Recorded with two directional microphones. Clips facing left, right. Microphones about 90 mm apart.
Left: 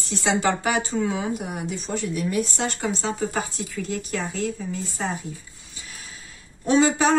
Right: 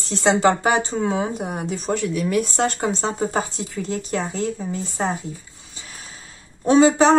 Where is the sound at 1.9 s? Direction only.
80° right.